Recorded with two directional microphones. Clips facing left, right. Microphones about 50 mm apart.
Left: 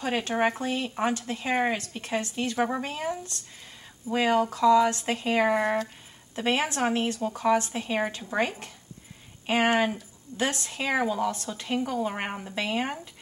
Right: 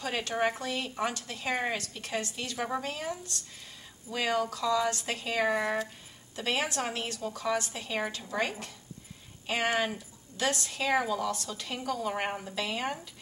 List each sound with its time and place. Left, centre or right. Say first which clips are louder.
0.0 s speech: left 4 dB; left